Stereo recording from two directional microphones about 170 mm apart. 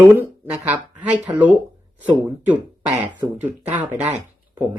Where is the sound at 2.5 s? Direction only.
10° right (ahead or behind).